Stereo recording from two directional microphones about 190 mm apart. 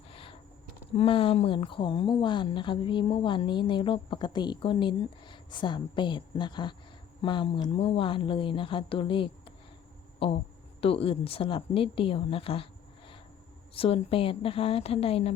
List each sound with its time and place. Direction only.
0.1 s a sound: 30° left (ahead or behind)
0.9 s speech: 30° left (ahead or behind)
13.7 s speech: 30° left (ahead or behind)